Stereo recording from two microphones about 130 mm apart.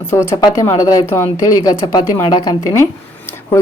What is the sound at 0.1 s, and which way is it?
A woman's voice, 20° left (ahead or behind).